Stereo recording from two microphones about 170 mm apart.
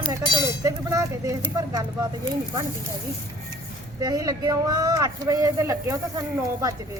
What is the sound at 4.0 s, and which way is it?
Speech, 20° right (ahead or behind).